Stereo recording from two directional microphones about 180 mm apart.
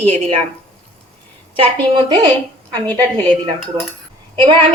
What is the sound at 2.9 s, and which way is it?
Speech, 10° left (ahead or behind).